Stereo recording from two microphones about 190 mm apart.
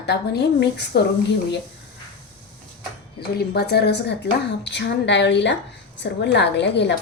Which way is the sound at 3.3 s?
60° left (ahead or behind).